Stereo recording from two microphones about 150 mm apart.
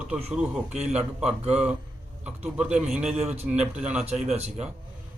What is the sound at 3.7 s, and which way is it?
Speech, 5° right (ahead or behind).